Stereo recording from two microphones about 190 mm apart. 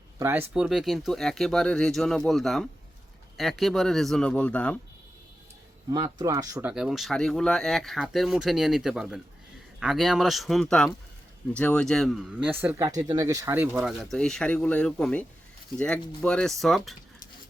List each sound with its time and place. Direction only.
0.2 s speech: 10° right (ahead or behind); by 4.8 s 5° left (ahead or behind)
5.9 s speech: 20° right (ahead or behind)
6.7 s speech: 5° right (ahead or behind)